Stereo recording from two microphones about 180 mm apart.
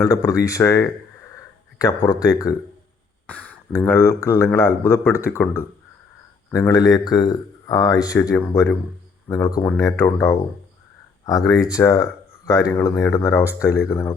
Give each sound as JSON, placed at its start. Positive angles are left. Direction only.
{"t": 0.0, "sound": "speech", "side_deg": 20}
{"t": 3.2, "sound": "speech", "side_deg": 5}
{"t": 6.5, "sound": "speech", "side_deg": 20}